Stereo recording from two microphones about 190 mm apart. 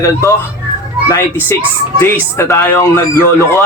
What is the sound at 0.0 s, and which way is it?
Speech, 15° left (ahead or behind).